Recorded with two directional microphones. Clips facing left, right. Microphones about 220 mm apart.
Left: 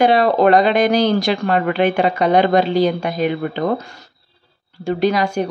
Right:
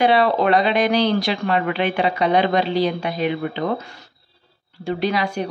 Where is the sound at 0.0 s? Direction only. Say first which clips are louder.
Left 4 dB; 45° left (ahead or behind).